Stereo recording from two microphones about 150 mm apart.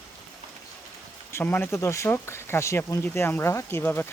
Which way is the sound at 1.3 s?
15° left (ahead or behind).